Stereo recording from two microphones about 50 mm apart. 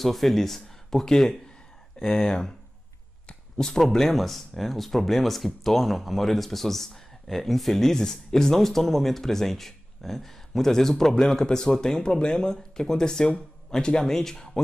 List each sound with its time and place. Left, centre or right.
0.0 s speech: centre